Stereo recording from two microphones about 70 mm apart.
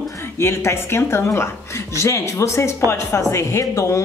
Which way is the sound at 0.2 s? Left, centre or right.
Left.